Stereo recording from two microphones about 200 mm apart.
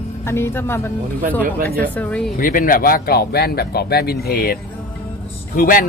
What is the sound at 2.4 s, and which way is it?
Speech, 45° left (ahead or behind).